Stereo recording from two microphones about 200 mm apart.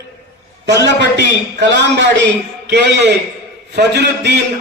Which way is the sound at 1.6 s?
60° right (ahead or behind).